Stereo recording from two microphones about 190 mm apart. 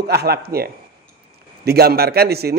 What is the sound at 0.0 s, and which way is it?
A man's voice, 55° right (ahead or behind).